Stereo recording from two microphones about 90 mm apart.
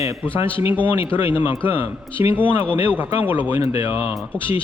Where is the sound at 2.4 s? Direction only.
70° left (ahead or behind).